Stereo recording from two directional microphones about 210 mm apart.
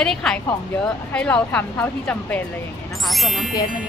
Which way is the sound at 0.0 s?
5° left (ahead or behind).